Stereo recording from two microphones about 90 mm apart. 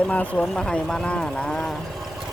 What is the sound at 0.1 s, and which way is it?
Speech, 15° left (ahead or behind).